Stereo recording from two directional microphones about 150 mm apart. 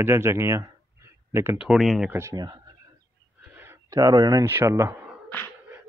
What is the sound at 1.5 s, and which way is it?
Speech, centre (ahead or behind).